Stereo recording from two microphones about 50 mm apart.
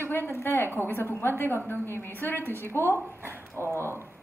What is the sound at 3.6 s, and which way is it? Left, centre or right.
Speech, right.